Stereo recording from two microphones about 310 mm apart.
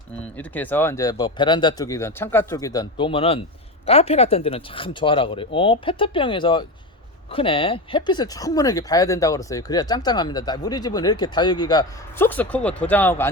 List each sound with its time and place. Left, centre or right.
0.3 s speech: centre